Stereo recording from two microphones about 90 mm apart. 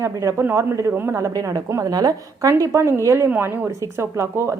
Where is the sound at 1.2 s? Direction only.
40° right (ahead or behind).